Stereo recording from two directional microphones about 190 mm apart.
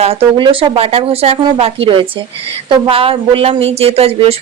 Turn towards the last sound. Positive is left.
turn(degrees=-30)  # may be behind; listen again after turning